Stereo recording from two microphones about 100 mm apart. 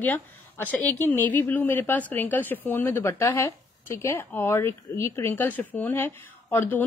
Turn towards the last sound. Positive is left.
turn(degrees=20)  # may be behind; listen again after turning